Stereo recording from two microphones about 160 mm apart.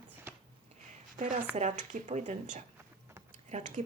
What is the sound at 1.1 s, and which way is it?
A woman's voice, 50° right (ahead or behind).